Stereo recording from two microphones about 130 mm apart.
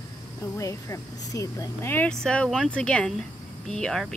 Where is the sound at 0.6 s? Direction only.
25° left (ahead or behind).